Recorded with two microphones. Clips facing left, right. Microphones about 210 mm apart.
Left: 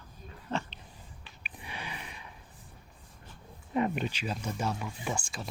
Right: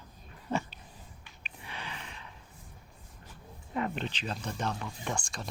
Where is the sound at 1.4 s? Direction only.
15° left (ahead or behind).